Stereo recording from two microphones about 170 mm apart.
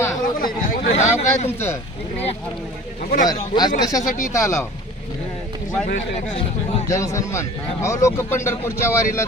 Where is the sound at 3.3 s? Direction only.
25° left (ahead or behind).